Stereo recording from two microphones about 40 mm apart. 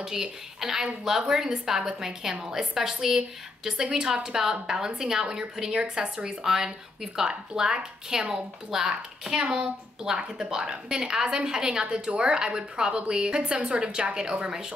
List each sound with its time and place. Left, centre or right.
0.0 s a woman's voice: centre